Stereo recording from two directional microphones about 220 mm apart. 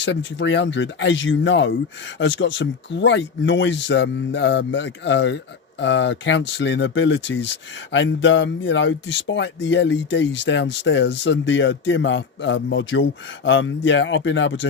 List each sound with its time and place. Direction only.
0.0 s speech: 55° left (ahead or behind)